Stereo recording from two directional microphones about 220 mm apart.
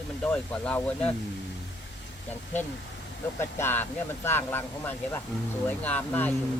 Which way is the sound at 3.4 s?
10° left (ahead or behind).